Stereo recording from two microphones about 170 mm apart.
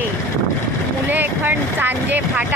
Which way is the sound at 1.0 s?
10° right (ahead or behind).